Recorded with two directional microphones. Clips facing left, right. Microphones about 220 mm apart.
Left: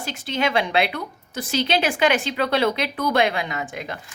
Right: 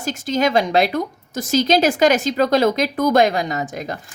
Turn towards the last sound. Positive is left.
turn(degrees=-40)  # may be behind; listen again after turning